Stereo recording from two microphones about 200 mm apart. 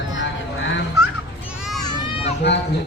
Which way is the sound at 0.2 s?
65° left (ahead or behind).